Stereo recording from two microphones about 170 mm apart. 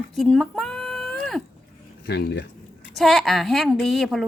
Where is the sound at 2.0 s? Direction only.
85° left.